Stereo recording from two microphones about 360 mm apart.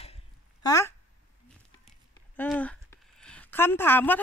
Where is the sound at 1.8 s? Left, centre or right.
Centre.